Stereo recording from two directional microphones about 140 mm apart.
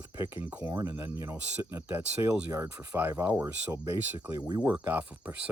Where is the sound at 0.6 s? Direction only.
25° right (ahead or behind).